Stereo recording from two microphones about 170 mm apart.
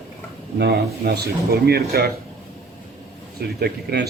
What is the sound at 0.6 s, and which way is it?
Speech, 75° right (ahead or behind).